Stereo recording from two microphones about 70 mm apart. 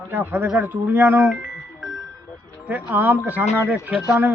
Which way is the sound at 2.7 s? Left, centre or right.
Right.